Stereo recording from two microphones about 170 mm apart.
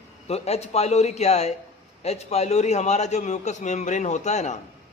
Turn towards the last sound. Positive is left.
turn(degrees=40)  # may be behind; listen again after turning